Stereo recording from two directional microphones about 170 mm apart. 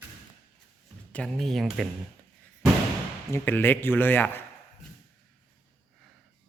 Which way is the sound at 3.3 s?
10° left (ahead or behind).